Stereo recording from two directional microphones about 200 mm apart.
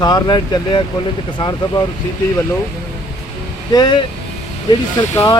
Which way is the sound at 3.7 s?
20° left (ahead or behind).